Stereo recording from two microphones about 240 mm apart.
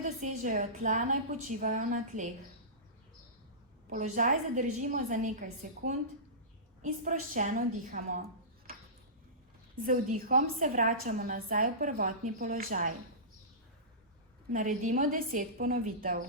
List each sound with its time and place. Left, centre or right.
0.0 s a woman's voice: right
3.8 s a woman's voice: right
9.8 s a woman's voice: right
14.5 s a woman's voice: right